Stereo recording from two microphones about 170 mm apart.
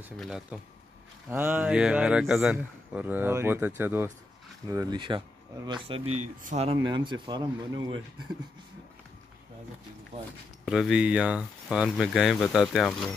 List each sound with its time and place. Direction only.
0.2 s speech: 5° right (ahead or behind); by 6.0 s 30° right (ahead or behind)
6.4 s speech: 40° right (ahead or behind)
6.8 s speech: 25° right (ahead or behind)
10.6 s speech: 5° right (ahead or behind)